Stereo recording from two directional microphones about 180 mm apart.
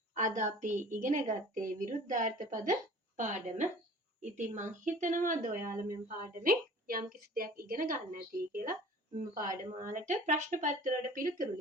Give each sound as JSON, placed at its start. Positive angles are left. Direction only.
{"t": 0.1, "sound": "a woman's voice", "side_deg": -45}